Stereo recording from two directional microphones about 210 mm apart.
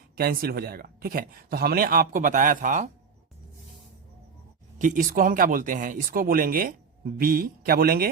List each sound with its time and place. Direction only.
0.2 s speech: 45° right (ahead or behind)
4.8 s speech: 40° right (ahead or behind)